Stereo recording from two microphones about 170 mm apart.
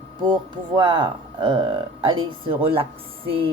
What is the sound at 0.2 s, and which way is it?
Speech, 30° right (ahead or behind).